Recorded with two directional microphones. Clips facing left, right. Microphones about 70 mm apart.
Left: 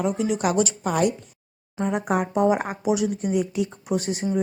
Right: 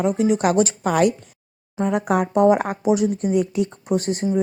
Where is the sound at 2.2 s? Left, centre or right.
Right.